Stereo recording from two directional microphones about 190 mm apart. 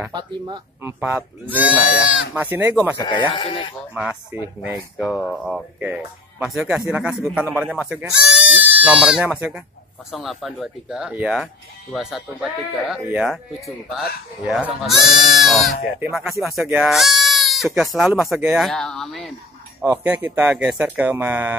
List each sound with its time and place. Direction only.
0.8 s speech: 10° right (ahead or behind)
3.0 s speech: 25° left (ahead or behind)
3.9 s speech: 5° right (ahead or behind)
19.8 s speech: 10° right (ahead or behind)